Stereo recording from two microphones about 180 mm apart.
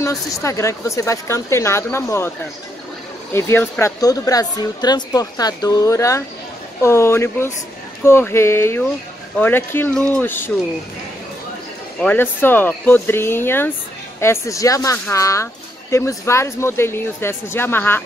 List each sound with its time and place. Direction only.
0.0 s a woman's voice: 15° left (ahead or behind)
3.3 s a woman's voice: 10° left (ahead or behind)
12.0 s a woman's voice: 10° left (ahead or behind)